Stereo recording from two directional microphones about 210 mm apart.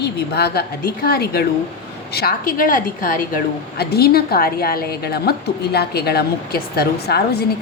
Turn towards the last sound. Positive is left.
turn(degrees=50)  # may be behind; listen again after turning